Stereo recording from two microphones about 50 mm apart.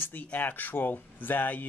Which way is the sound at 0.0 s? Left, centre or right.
Left.